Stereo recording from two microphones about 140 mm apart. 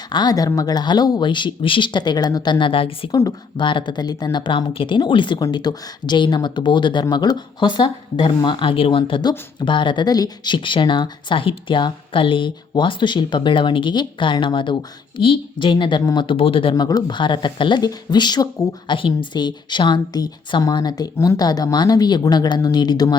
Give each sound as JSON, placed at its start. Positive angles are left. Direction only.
{"t": 0.1, "sound": "speech", "side_deg": 30}
{"t": 3.1, "sound": "speech", "side_deg": 25}